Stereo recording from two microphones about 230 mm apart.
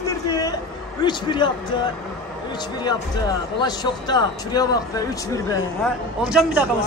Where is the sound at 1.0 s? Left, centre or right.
Centre.